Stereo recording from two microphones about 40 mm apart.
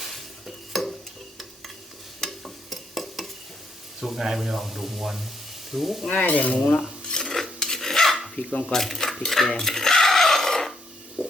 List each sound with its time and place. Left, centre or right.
0.0 s stir: centre
2.2 s stir: centre
4.0 s speech: centre
6.2 s speech: left
6.5 s speech: left
7.2 s filing: centre
8.1 s a sound: centre
8.6 s speech: centre
9.6 s filing: centre
11.2 s stomach rumble: right